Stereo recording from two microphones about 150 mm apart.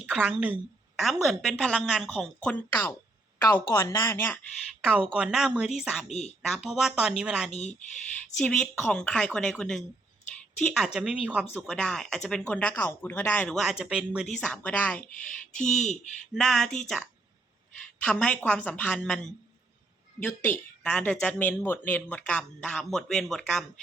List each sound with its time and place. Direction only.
0.1 s speech: 5° right (ahead or behind); by 4.4 s 15° left (ahead or behind)
4.8 s speech: 10° right (ahead or behind)
6.1 s speech: 45° left (ahead or behind)
6.4 s speech: centre (ahead or behind)
7.5 s speech: 45° left (ahead or behind)
8.4 s speech: 5° left (ahead or behind)
14.3 s speech: 10° left (ahead or behind)
16.3 s speech: centre (ahead or behind)